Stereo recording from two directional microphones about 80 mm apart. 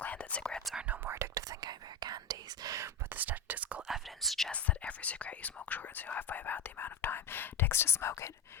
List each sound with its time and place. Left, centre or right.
0.0 s whispering: centre
0.6 s whispering: centre
0.9 s whispering: right
3.2 s whispering: right
3.8 s whispering: centre
4.5 s whispering: centre; by 8.3 s left